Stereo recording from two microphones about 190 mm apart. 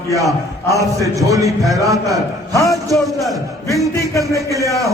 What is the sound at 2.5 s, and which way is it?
Speech, 15° left (ahead or behind).